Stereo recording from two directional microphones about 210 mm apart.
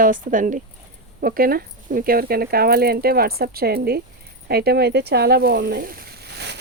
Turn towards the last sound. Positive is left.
turn(degrees=-50)  # may be behind; listen again after turning